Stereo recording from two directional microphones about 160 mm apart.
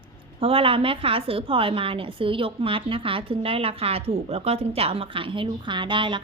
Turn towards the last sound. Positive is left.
turn(degrees=-30)  # may be behind; listen again after turning